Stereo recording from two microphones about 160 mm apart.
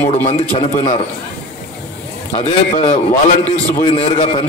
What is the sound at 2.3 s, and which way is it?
A man's voice, 40° left (ahead or behind).